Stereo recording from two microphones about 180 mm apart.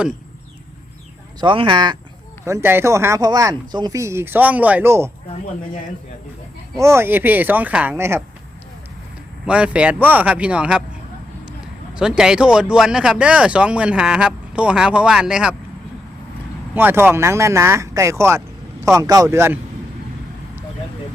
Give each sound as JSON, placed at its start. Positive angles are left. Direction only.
{"t": 1.4, "sound": "speech", "side_deg": -25}
{"t": 2.4, "sound": "speech", "side_deg": -15}
{"t": 6.7, "sound": "speech", "side_deg": -15}
{"t": 9.5, "sound": "speech", "side_deg": -5}
{"t": 11.9, "sound": "speech", "side_deg": -5}
{"t": 16.7, "sound": "speech", "side_deg": -10}